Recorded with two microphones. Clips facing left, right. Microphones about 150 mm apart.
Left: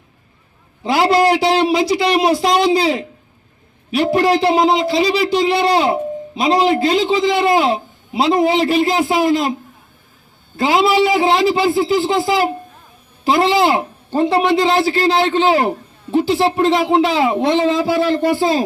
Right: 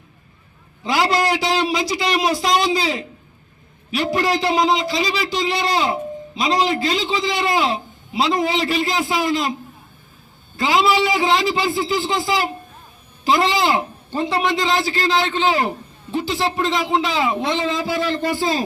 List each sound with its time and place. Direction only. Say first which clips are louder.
0.9 s a man's voice: left 5 dB; 55° left (ahead or behind)
10.6 s a man's voice: left 4 dB; 55° left (ahead or behind)